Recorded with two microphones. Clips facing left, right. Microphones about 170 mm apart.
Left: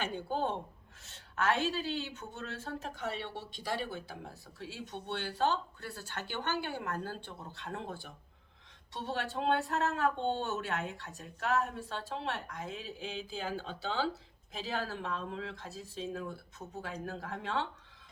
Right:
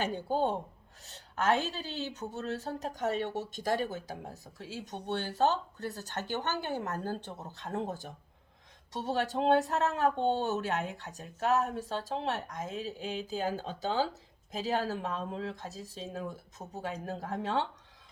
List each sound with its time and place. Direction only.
0.0 s a woman's voice: 40° right (ahead or behind)